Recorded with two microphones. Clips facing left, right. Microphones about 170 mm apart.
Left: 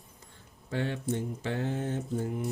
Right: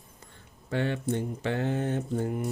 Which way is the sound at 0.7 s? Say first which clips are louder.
Right 3 dB; 65° right (ahead or behind).